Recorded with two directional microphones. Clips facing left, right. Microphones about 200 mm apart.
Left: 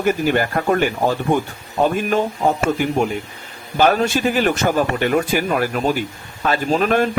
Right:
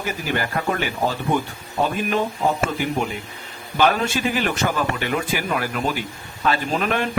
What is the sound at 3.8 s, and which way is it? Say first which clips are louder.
Speech: left 4 dB; 45° left (ahead or behind).